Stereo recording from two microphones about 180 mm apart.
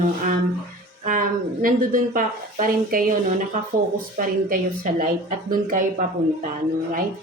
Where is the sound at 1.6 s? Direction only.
50° right (ahead or behind).